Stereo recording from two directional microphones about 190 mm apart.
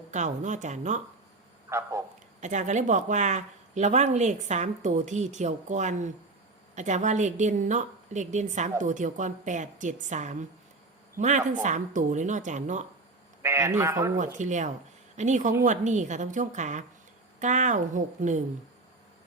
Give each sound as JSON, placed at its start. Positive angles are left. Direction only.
{"t": 0.1, "sound": "speech", "side_deg": -40}
{"t": 1.7, "sound": "speech", "side_deg": -15}
{"t": 2.4, "sound": "speech", "side_deg": -40}
{"t": 13.4, "sound": "a man's voice", "side_deg": -15}
{"t": 14.3, "sound": "speech", "side_deg": -40}